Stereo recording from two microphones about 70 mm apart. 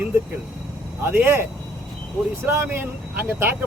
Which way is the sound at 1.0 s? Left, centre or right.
Right.